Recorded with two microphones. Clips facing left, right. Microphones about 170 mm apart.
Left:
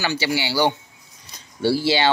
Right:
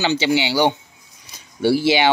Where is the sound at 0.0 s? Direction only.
20° right (ahead or behind).